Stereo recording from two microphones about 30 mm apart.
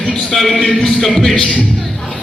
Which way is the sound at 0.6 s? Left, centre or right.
Left.